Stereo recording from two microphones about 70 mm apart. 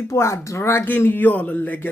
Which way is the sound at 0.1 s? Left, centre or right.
Left.